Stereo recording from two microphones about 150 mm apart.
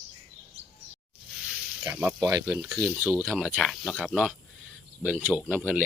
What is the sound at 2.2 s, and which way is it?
Speech, 20° right (ahead or behind).